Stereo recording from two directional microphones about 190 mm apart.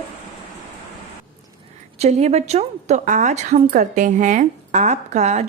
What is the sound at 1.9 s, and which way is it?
A woman's voice, 35° right (ahead or behind).